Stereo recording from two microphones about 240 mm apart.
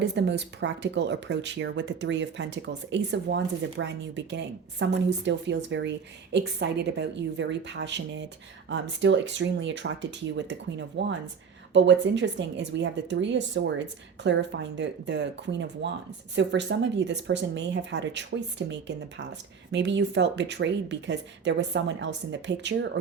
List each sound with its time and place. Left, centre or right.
0.0 s speech: right